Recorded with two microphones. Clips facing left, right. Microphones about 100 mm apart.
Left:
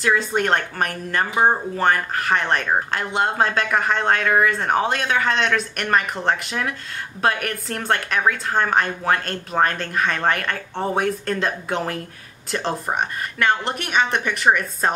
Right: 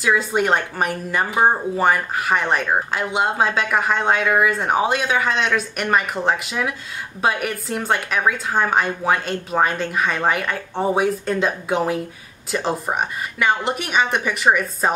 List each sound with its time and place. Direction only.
0.0 s speech: 5° right (ahead or behind)